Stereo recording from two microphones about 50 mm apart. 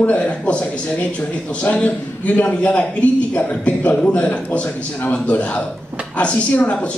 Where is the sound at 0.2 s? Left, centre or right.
Left.